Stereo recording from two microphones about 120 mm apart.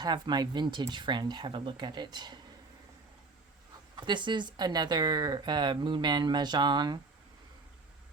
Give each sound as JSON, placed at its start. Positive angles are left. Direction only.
{"t": 0.0, "sound": "speech", "side_deg": -35}
{"t": 4.0, "sound": "speech", "side_deg": -40}